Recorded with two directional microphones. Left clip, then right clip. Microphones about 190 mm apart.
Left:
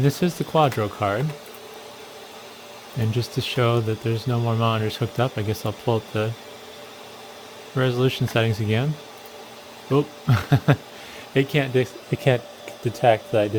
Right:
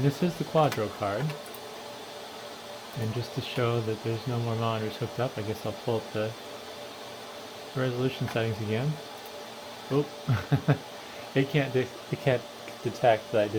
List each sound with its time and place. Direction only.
0.0 s speech: 60° left (ahead or behind)
3.2 s speech: 60° left (ahead or behind)
7.8 s speech: 60° left (ahead or behind)
9.9 s speech: 60° left (ahead or behind)